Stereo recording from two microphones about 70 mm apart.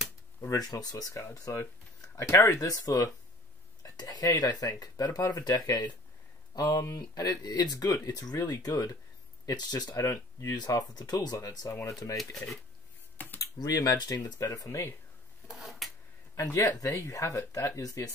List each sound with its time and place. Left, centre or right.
0.5 s speech: left
2.6 s speech: left
3.8 s speech: left
6.8 s speech: left
7.2 s speech: left
7.7 s speech: left
11.0 s speech: left
11.3 s speech: left
13.4 s speech: left
15.4 s a sound: centre
16.3 s speech: left